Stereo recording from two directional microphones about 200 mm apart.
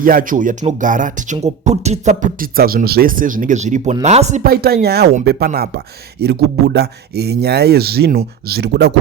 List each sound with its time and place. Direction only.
0.0 s speech: 45° right (ahead or behind)
4.4 s speech: 50° right (ahead or behind)